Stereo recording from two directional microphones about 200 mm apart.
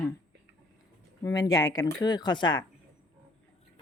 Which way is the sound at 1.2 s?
20° left (ahead or behind).